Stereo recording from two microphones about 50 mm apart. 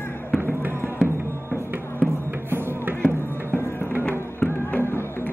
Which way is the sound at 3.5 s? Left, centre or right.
Left.